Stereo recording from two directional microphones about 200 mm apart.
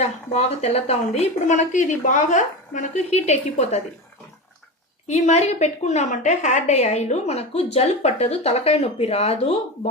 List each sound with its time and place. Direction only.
0.0 s a woman's voice: 30° left (ahead or behind)
5.0 s a woman's voice: 35° left (ahead or behind)